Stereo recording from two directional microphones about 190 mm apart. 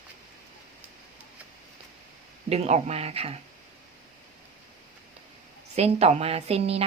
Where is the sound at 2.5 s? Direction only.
35° right (ahead or behind).